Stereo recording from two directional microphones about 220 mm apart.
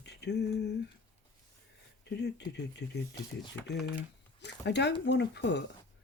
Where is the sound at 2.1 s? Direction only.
50° left (ahead or behind).